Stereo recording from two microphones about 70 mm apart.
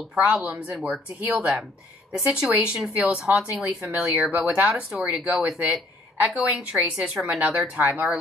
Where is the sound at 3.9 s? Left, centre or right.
Right.